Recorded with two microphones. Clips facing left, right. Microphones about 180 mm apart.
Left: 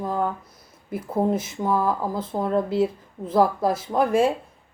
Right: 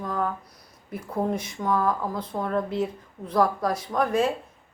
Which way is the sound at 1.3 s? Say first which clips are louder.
Left 4 dB; 5° left (ahead or behind).